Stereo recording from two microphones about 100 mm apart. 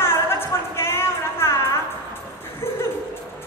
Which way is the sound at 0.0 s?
25° left (ahead or behind).